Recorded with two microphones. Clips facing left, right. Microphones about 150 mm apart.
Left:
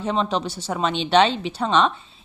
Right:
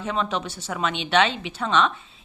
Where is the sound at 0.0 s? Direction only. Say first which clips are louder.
Left 3 dB; 30° left (ahead or behind).